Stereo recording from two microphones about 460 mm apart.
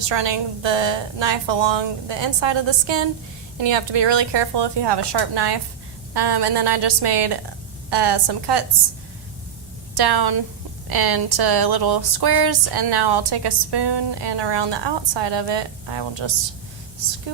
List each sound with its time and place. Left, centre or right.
0.1 s a woman's voice: right
9.9 s a woman's voice: right